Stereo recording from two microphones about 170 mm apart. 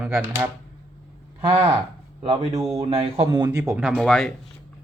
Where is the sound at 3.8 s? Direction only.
Centre (ahead or behind).